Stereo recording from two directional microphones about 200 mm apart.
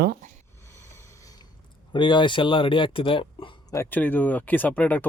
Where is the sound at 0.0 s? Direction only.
50° right (ahead or behind).